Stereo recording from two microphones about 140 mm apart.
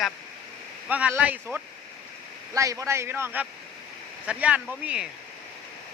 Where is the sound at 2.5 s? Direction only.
25° right (ahead or behind); by 5.1 s 5° right (ahead or behind).